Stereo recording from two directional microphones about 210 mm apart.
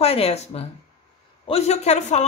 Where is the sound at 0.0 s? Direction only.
30° left (ahead or behind).